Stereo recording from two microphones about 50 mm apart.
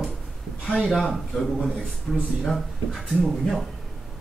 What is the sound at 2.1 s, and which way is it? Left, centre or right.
Speech, centre.